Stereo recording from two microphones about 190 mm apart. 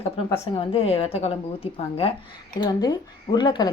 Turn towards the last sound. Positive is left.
turn(degrees=20)  # may be behind; listen again after turning